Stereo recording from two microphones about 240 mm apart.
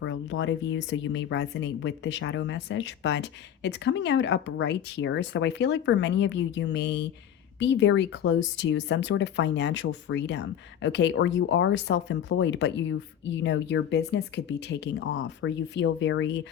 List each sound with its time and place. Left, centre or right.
0.0 s speech: left